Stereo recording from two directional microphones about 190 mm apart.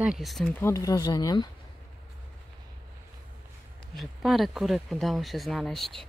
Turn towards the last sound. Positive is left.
turn(degrees=0)  # may be behind; listen again after turning